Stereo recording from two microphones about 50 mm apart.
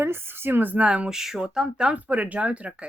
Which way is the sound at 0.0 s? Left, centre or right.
Right.